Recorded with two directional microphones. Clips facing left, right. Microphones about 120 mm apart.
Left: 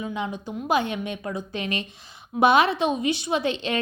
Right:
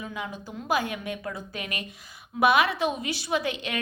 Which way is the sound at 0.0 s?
25° left (ahead or behind).